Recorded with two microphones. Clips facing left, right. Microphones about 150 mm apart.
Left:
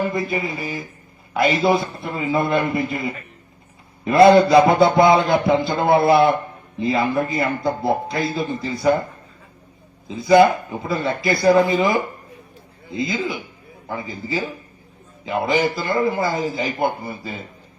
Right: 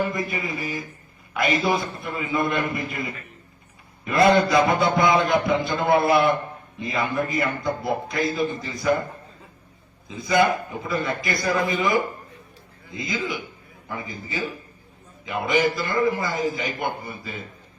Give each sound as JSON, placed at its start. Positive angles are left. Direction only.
{"t": 0.0, "sound": "a man's voice", "side_deg": 30}
{"t": 10.1, "sound": "a man's voice", "side_deg": 30}